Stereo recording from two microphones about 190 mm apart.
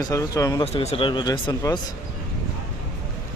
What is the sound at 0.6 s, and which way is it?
A man's voice, 35° left (ahead or behind).